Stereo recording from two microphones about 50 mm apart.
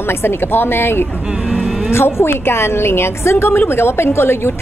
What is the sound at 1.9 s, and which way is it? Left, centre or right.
A woman's voice, left.